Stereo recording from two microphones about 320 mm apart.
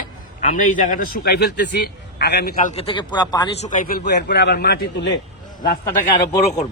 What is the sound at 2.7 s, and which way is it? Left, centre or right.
A man's voice, centre.